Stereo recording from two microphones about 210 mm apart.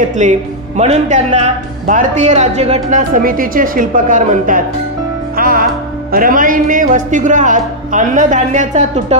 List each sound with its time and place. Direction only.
0.1 s speech: 35° right (ahead or behind)
5.3 s music: 45° right (ahead or behind)
6.1 s speech: 40° right (ahead or behind)